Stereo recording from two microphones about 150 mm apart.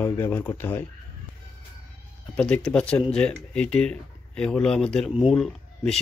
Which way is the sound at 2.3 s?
5° left (ahead or behind).